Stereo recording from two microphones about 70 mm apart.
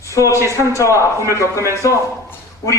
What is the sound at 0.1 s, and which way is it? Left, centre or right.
Speech, left.